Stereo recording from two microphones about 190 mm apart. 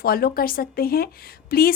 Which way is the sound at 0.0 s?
50° left (ahead or behind).